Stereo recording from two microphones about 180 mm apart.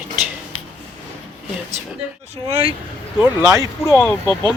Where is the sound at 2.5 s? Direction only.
30° right (ahead or behind).